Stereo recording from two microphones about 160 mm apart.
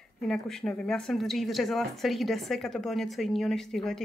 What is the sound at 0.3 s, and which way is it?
A woman's voice, centre (ahead or behind).